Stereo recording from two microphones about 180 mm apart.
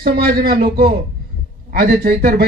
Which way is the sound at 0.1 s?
60° right (ahead or behind).